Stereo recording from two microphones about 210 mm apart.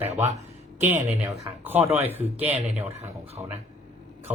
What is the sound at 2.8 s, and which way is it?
Speech, 30° right (ahead or behind).